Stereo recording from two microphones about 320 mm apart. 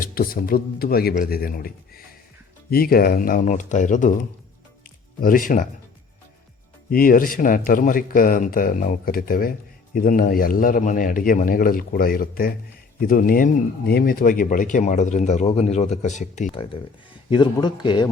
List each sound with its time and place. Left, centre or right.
0.0 s a man's voice: left
6.9 s a man's voice: left